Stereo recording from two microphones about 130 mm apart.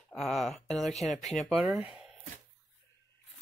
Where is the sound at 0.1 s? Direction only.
Centre (ahead or behind).